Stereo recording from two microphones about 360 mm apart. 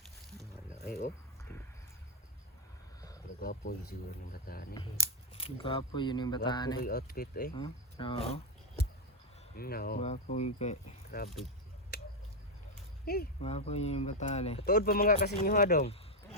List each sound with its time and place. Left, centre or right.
0.3 s music: centre
0.9 s speech: left
3.4 s speech: left
6.7 s speech: left
11.9 s squish: left
13.1 s speech: left